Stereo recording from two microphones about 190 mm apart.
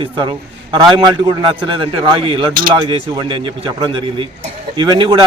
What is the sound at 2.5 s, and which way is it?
Speech, 50° right (ahead or behind).